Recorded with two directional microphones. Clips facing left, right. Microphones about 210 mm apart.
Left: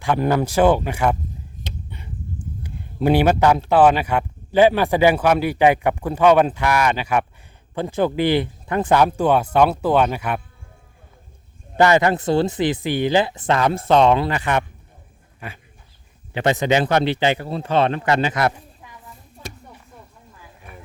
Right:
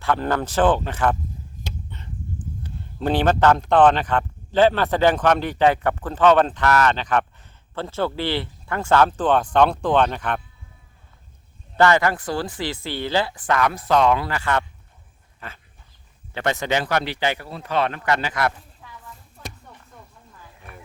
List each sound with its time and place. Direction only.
0.0 s speech: 15° left (ahead or behind)
11.8 s speech: 20° left (ahead or behind)